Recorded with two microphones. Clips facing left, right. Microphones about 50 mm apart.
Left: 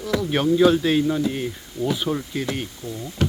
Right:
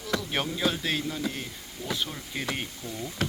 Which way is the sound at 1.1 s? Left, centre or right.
Left.